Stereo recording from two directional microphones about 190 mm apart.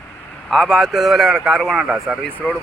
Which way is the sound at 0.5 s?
Centre (ahead or behind).